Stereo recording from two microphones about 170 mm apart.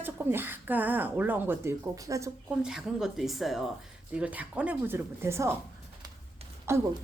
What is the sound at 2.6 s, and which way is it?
Speech, 5° right (ahead or behind).